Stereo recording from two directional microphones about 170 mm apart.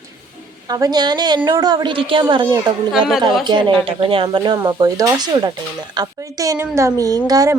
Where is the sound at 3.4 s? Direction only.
25° right (ahead or behind).